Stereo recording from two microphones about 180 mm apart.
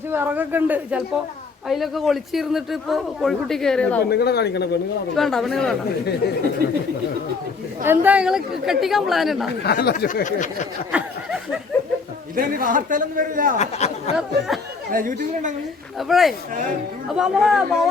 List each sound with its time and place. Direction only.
0.1 s speech: 10° right (ahead or behind); by 4.0 s 5° left (ahead or behind)
4.1 s speech: 65° left (ahead or behind)
5.1 s speech: centre (ahead or behind)
6.6 s speech: 55° right (ahead or behind)
7.9 s speech: 10° right (ahead or behind)
9.5 s speech: 65° left (ahead or behind)
10.2 s a sound: 45° left (ahead or behind)
10.9 s snicker: 5° right (ahead or behind)
12.4 s a man's voice: 50° right (ahead or behind)
13.6 s speech: 40° left (ahead or behind)
14.2 s speech: centre (ahead or behind)
14.9 s a man's voice: 45° right (ahead or behind)
16.0 s speech: centre (ahead or behind)